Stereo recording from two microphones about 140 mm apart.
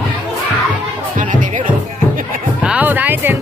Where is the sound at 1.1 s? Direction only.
70° right (ahead or behind).